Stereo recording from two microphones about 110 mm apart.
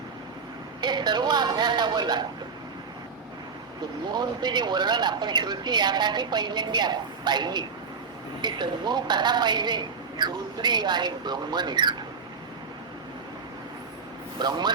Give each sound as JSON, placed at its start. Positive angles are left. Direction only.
{"t": 0.8, "sound": "a man's voice", "side_deg": -40}
{"t": 4.1, "sound": "a man's voice", "side_deg": -40}
{"t": 14.3, "sound": "a man's voice", "side_deg": -40}